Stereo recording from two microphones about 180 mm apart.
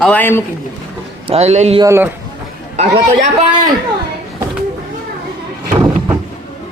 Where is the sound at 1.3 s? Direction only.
35° right (ahead or behind).